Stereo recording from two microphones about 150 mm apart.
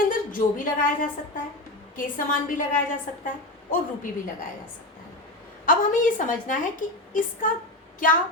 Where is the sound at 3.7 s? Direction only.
65° left (ahead or behind).